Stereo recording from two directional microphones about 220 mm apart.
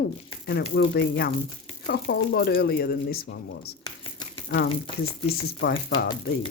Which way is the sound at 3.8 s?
20° left (ahead or behind).